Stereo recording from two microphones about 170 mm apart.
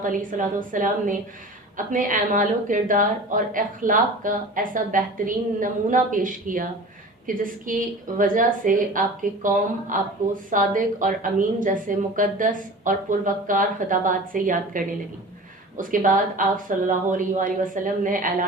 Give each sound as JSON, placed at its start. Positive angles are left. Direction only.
{"t": 0.0, "sound": "a woman's voice", "side_deg": -50}